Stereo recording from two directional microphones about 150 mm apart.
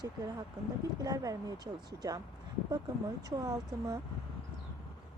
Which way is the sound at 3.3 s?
25° right (ahead or behind).